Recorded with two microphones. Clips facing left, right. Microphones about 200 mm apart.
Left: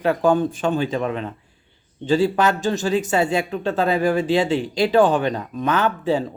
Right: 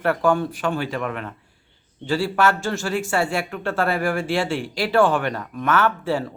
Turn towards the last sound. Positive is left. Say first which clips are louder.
# left 1 dB
turn(degrees=20)  # may be behind; listen again after turning